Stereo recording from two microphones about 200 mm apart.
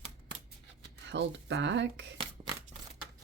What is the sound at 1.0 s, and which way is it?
A woman's voice, 65° right (ahead or behind).